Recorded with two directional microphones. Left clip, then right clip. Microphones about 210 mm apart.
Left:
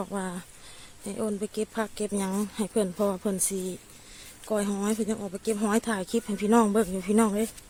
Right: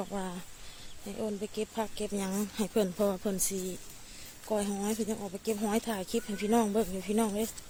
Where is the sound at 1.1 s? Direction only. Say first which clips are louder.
Left 5 dB; 30° left (ahead or behind).